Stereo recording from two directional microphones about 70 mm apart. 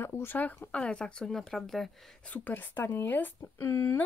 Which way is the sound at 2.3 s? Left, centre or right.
Left.